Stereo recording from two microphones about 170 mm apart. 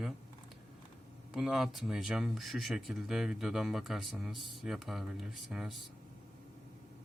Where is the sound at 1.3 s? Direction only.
5° right (ahead or behind).